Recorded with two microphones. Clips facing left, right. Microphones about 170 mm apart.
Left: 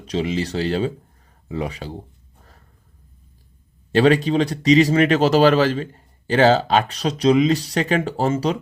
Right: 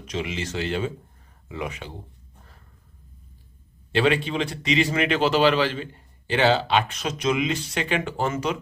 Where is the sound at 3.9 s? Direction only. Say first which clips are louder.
Left 6 dB; 40° left (ahead or behind).